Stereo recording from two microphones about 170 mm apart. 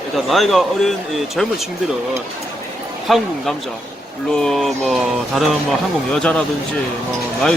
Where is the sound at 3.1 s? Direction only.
Centre (ahead or behind).